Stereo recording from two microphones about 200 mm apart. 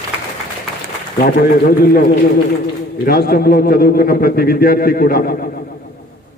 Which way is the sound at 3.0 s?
50° left (ahead or behind).